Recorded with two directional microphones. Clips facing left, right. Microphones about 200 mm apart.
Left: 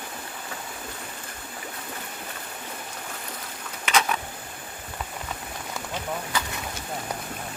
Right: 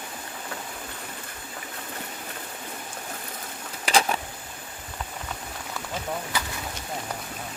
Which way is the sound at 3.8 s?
35° right (ahead or behind).